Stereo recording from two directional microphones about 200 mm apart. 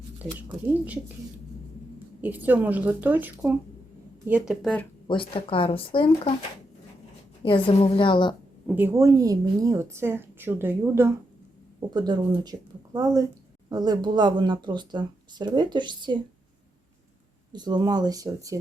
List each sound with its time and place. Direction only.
0.2 s a woman's voice: 10° right (ahead or behind)
2.2 s a woman's voice: 10° right (ahead or behind)
4.6 s speech: 5° left (ahead or behind)
5.0 s speech: 25° left (ahead or behind)
7.4 s speech: 25° left (ahead or behind)
8.6 s a woman's voice: 10° right (ahead or behind)
17.5 s speech: 20° right (ahead or behind)